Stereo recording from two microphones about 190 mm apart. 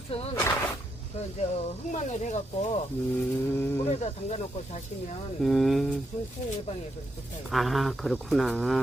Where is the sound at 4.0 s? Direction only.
35° left (ahead or behind).